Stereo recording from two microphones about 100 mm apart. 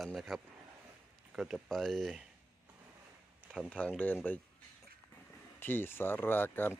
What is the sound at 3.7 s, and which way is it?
Speech, 15° left (ahead or behind).